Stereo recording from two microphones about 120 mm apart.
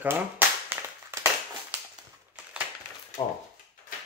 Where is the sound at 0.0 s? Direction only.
15° right (ahead or behind).